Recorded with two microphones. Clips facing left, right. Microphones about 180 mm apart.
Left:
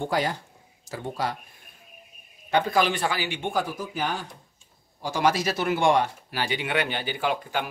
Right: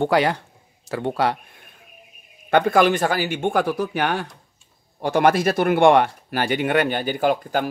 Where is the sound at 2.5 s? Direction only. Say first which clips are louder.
Right 6 dB; 55° right (ahead or behind).